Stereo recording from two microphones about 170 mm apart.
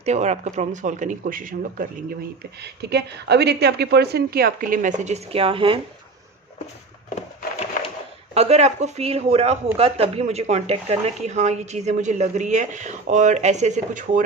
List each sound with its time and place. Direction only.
0.0 s speech: 40° right (ahead or behind)
2.6 s a woman's voice: 80° right; by 5.8 s 30° right (ahead or behind)
8.3 s speech: 40° right (ahead or behind)